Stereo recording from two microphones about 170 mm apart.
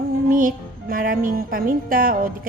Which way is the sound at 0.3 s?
55° right (ahead or behind).